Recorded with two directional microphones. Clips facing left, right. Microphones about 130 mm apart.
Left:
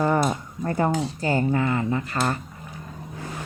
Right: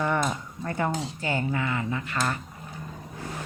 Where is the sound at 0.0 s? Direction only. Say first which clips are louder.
Left 5 dB; 35° left (ahead or behind).